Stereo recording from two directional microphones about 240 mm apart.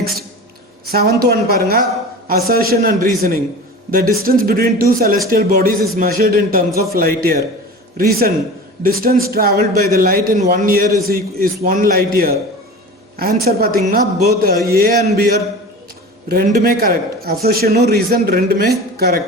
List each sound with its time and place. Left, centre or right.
0.9 s a man's voice: right
8.8 s a man's voice: right